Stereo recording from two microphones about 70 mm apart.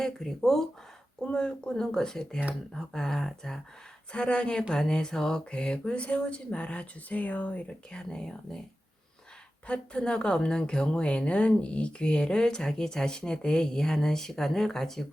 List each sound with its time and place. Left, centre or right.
0.0 s a woman's voice: centre
7.9 s a woman's voice: centre
9.6 s a woman's voice: centre